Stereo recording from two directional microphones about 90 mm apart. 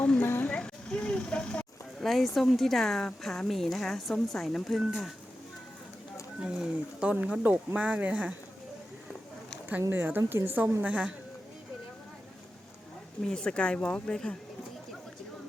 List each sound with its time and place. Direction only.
0.2 s a sound: 25° left (ahead or behind)
0.4 s vehicle: 10° left (ahead or behind)
2.0 s a woman's voice: centre (ahead or behind)
6.4 s speech: 10° right (ahead or behind)
9.9 s a woman's voice: 20° right (ahead or behind)
13.2 s speech: 10° left (ahead or behind)